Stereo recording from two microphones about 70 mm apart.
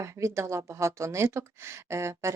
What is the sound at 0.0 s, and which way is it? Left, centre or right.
Speech, right.